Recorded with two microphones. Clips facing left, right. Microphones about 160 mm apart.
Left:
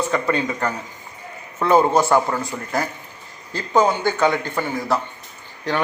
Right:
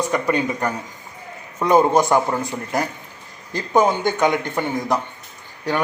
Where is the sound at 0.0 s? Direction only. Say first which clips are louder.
Right 1 dB; 15° right (ahead or behind).